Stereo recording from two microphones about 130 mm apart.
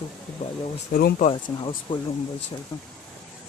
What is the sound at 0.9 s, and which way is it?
Speech, 90° left.